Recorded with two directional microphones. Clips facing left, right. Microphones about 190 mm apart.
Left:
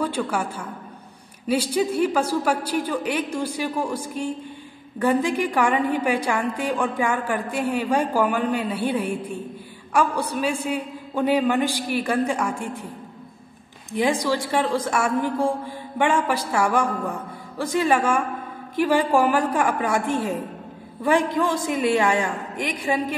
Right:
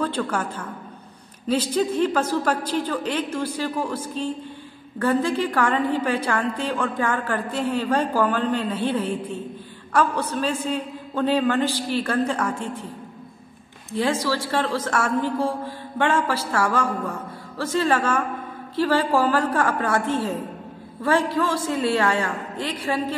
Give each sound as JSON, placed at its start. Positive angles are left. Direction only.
{"t": 0.0, "sound": "a woman's voice", "side_deg": 10}
{"t": 13.9, "sound": "a woman's voice", "side_deg": 15}